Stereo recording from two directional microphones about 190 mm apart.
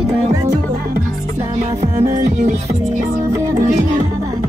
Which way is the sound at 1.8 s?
35° right (ahead or behind).